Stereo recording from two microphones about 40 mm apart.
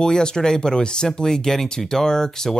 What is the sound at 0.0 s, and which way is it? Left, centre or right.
Speech, centre.